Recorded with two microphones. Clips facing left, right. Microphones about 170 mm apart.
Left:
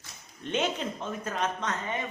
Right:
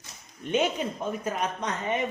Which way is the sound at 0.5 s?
10° right (ahead or behind).